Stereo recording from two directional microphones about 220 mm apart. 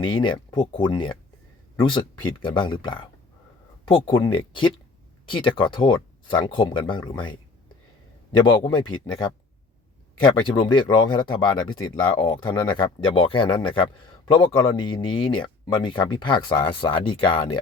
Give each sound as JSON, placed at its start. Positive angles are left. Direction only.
{"t": 0.0, "sound": "speech", "side_deg": 20}
{"t": 8.7, "sound": "speech", "side_deg": 20}
{"t": 10.4, "sound": "speech", "side_deg": 20}